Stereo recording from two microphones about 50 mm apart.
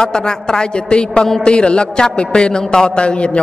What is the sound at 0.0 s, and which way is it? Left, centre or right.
A woman's voice, centre.